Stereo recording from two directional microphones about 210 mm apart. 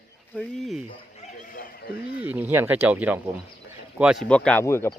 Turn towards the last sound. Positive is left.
turn(degrees=10)  # may be behind; listen again after turning